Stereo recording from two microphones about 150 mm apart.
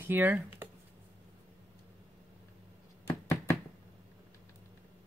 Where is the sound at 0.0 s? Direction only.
15° right (ahead or behind).